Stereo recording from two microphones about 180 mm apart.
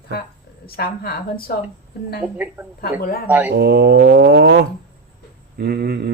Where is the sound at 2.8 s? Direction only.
60° left (ahead or behind).